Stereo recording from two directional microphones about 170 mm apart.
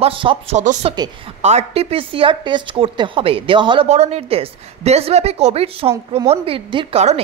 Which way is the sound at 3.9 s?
40° right (ahead or behind).